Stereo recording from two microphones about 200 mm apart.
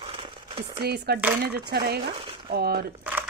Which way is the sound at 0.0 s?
25° right (ahead or behind).